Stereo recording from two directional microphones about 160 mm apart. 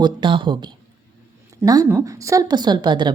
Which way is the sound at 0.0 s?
30° right (ahead or behind).